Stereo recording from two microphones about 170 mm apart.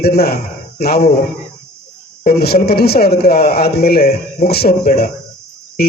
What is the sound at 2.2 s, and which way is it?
Speech, 65° left (ahead or behind).